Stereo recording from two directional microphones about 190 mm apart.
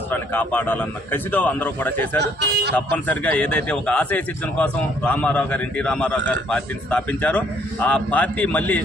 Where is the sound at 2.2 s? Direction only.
60° right (ahead or behind).